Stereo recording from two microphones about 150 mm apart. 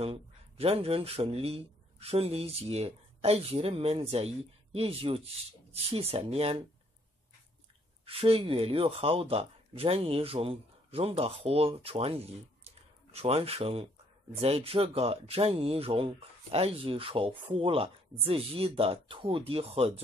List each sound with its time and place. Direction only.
0.0 s speech: 40° right (ahead or behind)
8.0 s speech: 40° right (ahead or behind)
12.6 s computer keyboard: 40° right (ahead or behind)
14.3 s speech: 40° right (ahead or behind)